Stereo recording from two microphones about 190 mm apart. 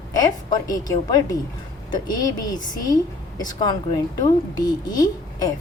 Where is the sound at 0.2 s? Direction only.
20° left (ahead or behind).